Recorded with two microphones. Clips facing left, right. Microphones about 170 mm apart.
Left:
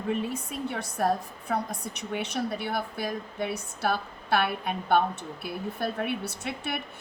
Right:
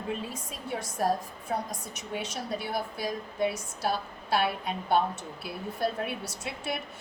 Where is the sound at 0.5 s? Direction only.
60° left (ahead or behind).